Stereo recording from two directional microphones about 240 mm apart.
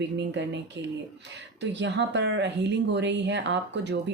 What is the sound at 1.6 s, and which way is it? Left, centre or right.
Speech, right.